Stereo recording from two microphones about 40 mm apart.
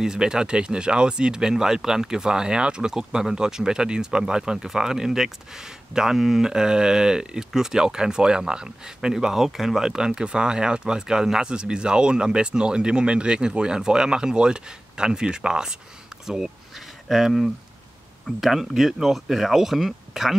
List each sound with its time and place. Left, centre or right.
0.0 s speech: centre
16.3 s a sound: centre
18.2 s speech: centre